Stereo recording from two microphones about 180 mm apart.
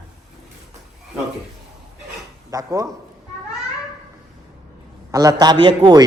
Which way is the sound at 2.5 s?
20° right (ahead or behind).